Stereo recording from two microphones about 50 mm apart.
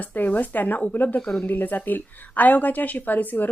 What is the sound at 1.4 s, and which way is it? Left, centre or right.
A woman's voice, left.